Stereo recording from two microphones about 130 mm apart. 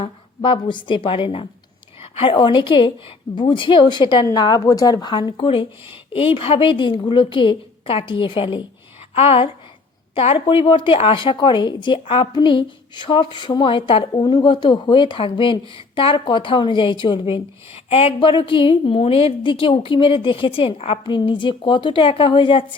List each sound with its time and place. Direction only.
0.0 s a woman's voice: 40° left (ahead or behind)